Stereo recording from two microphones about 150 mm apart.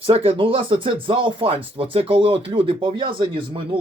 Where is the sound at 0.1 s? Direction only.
40° right (ahead or behind).